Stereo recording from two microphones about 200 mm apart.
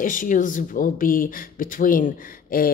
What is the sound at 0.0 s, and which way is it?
Speech, 40° left (ahead or behind).